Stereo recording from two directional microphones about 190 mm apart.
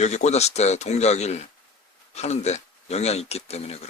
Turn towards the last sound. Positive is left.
turn(degrees=35)  # may be behind; listen again after turning